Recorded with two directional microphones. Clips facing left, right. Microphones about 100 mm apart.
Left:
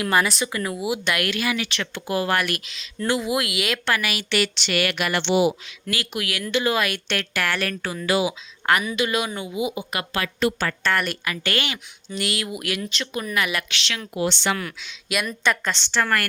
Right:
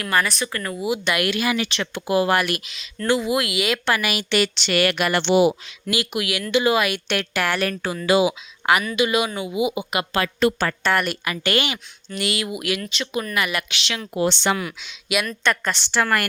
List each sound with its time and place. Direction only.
0.0 s speech: 15° left (ahead or behind); by 1.4 s 5° right (ahead or behind)
1.5 s speech: 30° right (ahead or behind)
1.8 s a woman's voice: 15° right (ahead or behind)
3.8 s speech: 15° right (ahead or behind); by 5.5 s 55° right (ahead or behind)
5.9 s a woman's voice: 15° right (ahead or behind)
8.6 s a woman's voice: 10° right (ahead or behind)
10.2 s speech: 35° right (ahead or behind)
10.8 s a woman's voice: 10° right (ahead or behind)
12.1 s a woman's voice: centre (ahead or behind)
14.1 s speech: 40° right (ahead or behind)
14.5 s a woman's voice: 15° right (ahead or behind)